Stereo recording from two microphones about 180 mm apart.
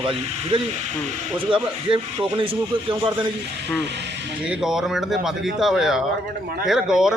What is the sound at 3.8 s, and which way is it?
Speech, 75° right (ahead or behind).